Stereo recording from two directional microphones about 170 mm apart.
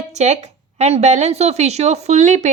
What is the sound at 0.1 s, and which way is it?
A woman's voice, 40° right (ahead or behind).